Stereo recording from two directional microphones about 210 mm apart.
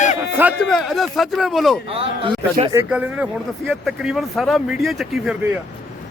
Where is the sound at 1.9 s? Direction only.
25° right (ahead or behind).